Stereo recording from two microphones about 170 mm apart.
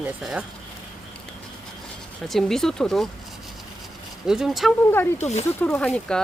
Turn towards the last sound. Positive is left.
turn(degrees=5)  # may be behind; listen again after turning